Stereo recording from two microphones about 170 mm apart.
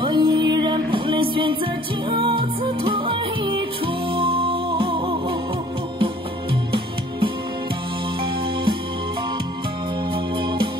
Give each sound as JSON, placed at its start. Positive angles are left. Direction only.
{"t": 0.0, "sound": "music", "side_deg": -25}